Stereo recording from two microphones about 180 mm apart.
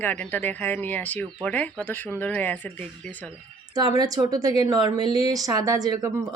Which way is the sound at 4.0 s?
20° right (ahead or behind).